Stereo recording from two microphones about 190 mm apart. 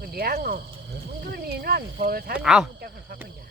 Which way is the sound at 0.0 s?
55° right (ahead or behind).